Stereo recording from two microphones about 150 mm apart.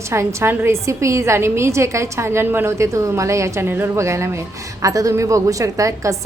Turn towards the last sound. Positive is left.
turn(degrees=-20)  # may be behind; listen again after turning